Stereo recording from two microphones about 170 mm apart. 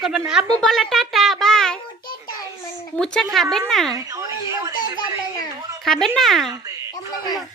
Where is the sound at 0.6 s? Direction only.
Centre (ahead or behind).